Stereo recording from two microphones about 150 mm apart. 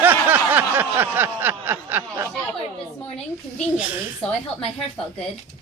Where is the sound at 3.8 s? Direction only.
10° right (ahead or behind).